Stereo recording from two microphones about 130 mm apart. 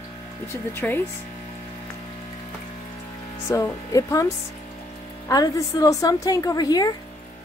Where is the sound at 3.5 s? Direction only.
25° left (ahead or behind).